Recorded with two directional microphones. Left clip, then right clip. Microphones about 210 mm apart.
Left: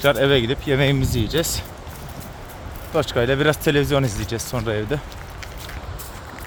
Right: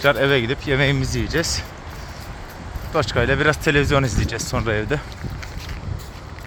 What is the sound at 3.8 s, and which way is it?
Speech, 5° left (ahead or behind).